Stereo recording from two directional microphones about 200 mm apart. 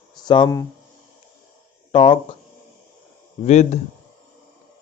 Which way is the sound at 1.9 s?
25° left (ahead or behind).